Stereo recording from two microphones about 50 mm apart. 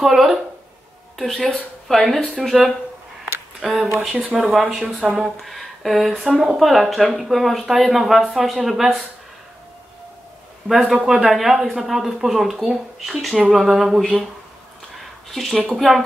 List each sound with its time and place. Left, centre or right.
0.0 s a woman's voice: centre
10.7 s speech: centre
15.3 s speech: centre